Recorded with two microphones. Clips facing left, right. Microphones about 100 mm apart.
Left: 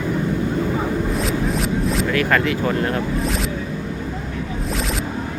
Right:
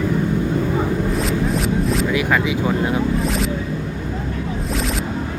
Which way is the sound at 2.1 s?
10° right (ahead or behind).